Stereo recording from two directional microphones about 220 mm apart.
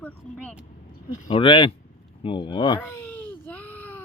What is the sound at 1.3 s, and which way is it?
Speech, 20° left (ahead or behind).